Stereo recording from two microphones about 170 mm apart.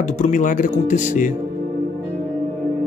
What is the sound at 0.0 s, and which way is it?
Speech, 45° left (ahead or behind).